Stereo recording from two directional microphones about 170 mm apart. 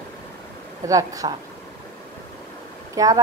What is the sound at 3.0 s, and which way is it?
Speech, 20° right (ahead or behind).